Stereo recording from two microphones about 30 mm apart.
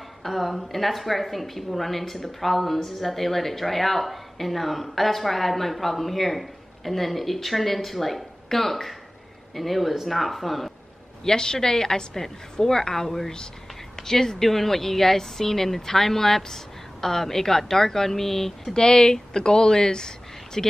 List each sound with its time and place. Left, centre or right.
0.2 s a woman's voice: centre
11.2 s a woman's voice: left
18.7 s speech: left